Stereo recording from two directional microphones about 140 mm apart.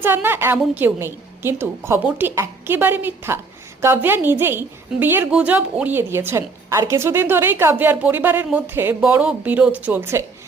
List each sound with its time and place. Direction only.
0.0 s a woman's voice: 15° right (ahead or behind)